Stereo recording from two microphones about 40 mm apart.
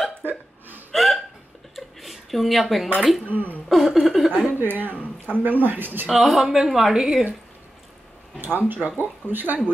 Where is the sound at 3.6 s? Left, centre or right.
Centre.